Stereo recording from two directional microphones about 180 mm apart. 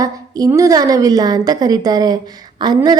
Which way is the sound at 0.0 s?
20° right (ahead or behind).